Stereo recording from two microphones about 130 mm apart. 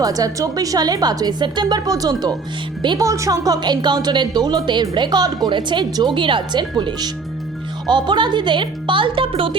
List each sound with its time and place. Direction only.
0.0 s a woman's voice: 30° right (ahead or behind)
3.1 s a woman's voice: 25° right (ahead or behind); by 9.6 s 45° right (ahead or behind)